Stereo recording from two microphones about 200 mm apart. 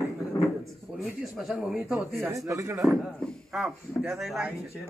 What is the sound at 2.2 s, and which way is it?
Speech, 15° right (ahead or behind).